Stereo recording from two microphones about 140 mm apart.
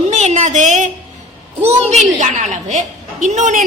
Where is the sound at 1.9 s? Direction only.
55° right (ahead or behind).